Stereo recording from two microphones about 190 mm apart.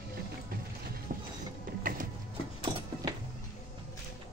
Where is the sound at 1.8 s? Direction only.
45° right (ahead or behind).